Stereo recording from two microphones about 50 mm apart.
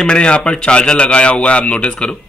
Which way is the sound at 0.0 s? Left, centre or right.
Centre.